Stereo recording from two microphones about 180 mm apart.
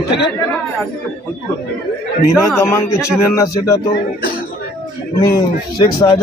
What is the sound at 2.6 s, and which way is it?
Speech, 15° left (ahead or behind).